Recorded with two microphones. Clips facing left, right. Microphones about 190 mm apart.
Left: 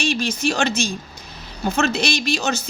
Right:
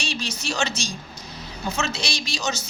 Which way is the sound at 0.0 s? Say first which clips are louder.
Left 9 dB; 55° left (ahead or behind).